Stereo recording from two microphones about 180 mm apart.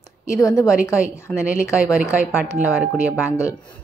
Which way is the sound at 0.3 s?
20° left (ahead or behind).